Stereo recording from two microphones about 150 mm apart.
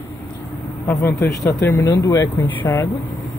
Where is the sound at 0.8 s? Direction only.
15° left (ahead or behind).